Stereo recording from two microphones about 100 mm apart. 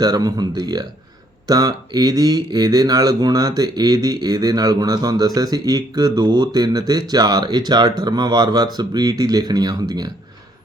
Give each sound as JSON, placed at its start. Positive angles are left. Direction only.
{"t": 0.0, "sound": "speech", "side_deg": -40}